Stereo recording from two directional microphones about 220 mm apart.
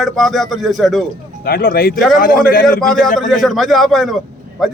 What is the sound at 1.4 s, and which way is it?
A man's voice, 45° left (ahead or behind).